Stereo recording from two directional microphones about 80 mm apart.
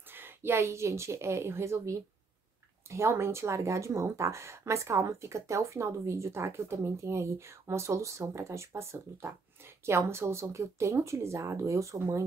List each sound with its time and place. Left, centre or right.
0.1 s a woman's voice: right